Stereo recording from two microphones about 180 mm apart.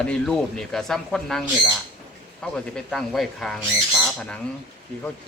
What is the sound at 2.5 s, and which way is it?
Speech, 5° left (ahead or behind).